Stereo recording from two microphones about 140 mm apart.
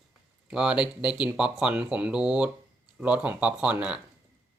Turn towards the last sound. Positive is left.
turn(degrees=-10)  # may be behind; listen again after turning